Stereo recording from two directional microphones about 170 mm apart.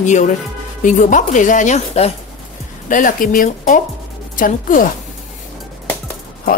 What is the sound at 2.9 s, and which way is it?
A woman's voice, 50° left (ahead or behind).